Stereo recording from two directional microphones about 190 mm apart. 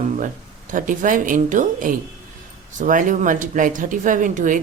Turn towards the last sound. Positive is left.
turn(degrees=-45)  # may be behind; listen again after turning